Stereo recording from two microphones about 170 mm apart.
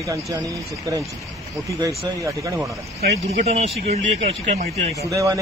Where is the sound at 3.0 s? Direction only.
40° right (ahead or behind).